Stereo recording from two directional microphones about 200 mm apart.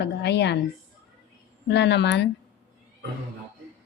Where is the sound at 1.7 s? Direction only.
60° left (ahead or behind).